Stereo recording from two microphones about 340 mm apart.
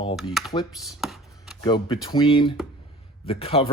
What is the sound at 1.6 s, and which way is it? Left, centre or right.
Speech, centre.